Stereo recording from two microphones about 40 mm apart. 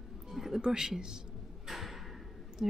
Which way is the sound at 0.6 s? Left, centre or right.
Centre.